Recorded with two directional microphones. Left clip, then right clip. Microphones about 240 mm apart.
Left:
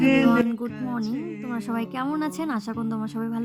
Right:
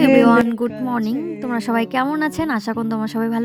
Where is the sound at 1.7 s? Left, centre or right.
Right.